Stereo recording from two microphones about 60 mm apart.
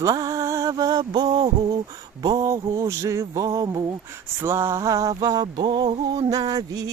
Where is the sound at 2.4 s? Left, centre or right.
Right.